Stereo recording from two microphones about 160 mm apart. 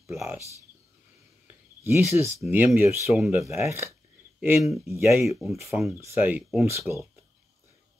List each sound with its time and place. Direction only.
1.8 s speech: 15° right (ahead or behind)
5.4 s speech: centre (ahead or behind)
5.9 s speech: 15° right (ahead or behind)